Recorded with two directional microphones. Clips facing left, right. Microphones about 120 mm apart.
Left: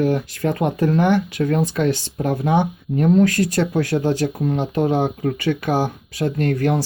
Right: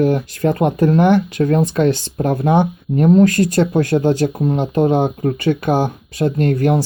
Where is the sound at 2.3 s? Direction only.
50° right (ahead or behind).